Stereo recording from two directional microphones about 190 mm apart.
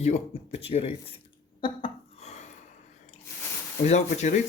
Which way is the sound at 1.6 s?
30° left (ahead or behind).